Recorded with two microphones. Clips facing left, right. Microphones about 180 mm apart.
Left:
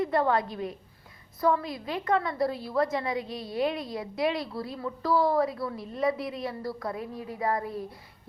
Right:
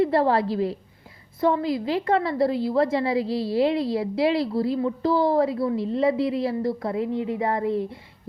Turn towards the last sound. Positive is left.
turn(degrees=-25)  # may be behind; listen again after turning